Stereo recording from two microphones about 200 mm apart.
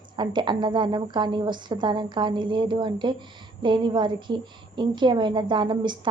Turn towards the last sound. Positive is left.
turn(degrees=-20)  # may be behind; listen again after turning